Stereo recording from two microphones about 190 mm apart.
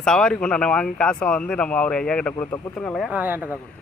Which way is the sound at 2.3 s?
20° left (ahead or behind).